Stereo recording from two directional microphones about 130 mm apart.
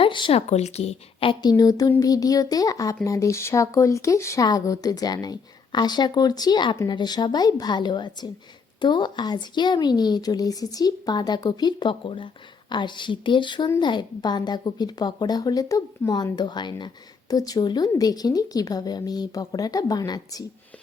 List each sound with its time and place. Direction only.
0.0 s speech: 40° left (ahead or behind)
1.4 s a woman's voice: 30° left (ahead or behind)